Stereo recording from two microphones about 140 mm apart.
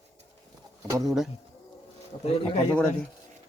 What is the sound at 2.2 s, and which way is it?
Speech, 50° left (ahead or behind).